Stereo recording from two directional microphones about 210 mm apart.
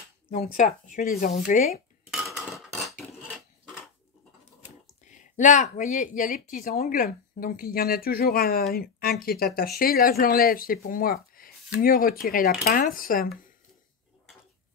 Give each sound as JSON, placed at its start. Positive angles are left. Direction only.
{"t": 0.4, "sound": "speech", "side_deg": 40}
{"t": 2.1, "sound": "dishes", "side_deg": 0}
{"t": 5.0, "sound": "speech", "side_deg": 35}